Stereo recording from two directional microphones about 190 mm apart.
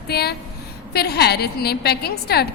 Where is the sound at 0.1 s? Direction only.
55° left (ahead or behind).